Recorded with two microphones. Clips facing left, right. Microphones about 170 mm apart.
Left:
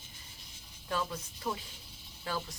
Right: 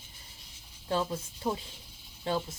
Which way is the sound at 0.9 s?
30° right (ahead or behind).